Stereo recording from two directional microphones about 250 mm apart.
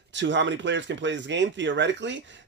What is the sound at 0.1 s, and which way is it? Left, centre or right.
Speech, right.